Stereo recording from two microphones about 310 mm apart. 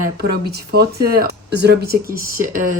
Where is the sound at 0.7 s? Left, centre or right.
Right.